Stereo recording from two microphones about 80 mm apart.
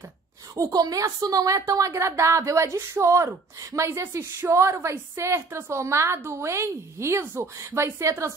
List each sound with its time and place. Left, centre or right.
0.6 s a woman's voice: right